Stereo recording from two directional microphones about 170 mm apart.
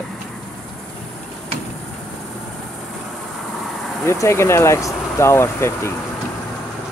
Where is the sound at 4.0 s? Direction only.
15° left (ahead or behind).